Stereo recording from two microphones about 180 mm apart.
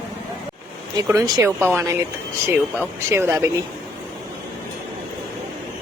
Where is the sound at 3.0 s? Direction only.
15° right (ahead or behind).